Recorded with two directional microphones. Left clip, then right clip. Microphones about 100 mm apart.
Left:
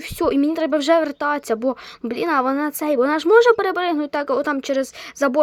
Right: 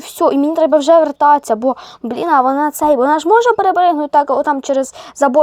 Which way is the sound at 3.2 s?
40° left (ahead or behind).